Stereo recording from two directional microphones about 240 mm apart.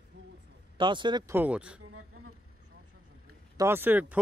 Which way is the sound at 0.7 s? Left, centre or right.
Centre.